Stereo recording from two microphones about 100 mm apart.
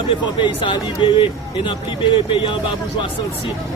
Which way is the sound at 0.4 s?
55° left (ahead or behind).